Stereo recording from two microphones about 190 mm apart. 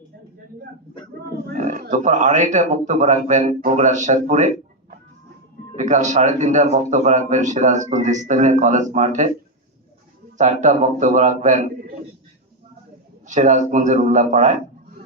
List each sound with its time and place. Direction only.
1.5 s a man's voice: 40° right (ahead or behind)
10.3 s a man's voice: 40° right (ahead or behind)
13.2 s a man's voice: 40° right (ahead or behind)